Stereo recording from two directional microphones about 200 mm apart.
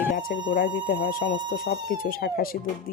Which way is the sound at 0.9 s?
55° left (ahead or behind).